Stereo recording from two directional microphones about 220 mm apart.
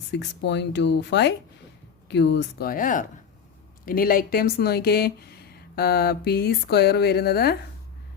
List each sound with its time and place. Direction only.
0.1 s speech: 50° left (ahead or behind)